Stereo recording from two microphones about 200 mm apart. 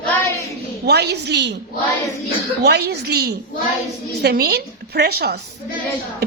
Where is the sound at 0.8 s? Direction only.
55° right (ahead or behind).